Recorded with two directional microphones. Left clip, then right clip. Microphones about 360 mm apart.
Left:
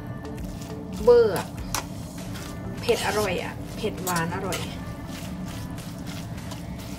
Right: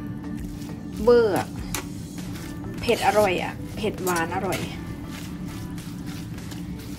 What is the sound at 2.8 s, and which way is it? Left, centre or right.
Speech, centre.